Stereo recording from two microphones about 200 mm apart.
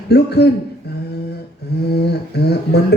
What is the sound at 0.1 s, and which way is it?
Speech, 55° left (ahead or behind).